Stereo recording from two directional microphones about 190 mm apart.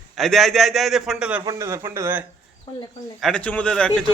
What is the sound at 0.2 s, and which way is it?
A man's voice, centre (ahead or behind).